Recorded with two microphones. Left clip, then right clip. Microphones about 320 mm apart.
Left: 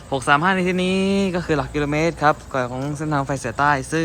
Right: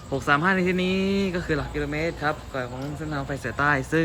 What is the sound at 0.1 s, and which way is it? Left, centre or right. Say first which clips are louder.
Speech: left 4 dB; centre.